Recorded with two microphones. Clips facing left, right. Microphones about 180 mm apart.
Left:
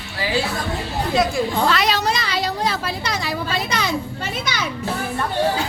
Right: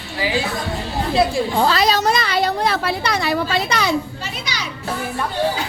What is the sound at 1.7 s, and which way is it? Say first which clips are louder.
Speech: right 3 dB; 35° right (ahead or behind).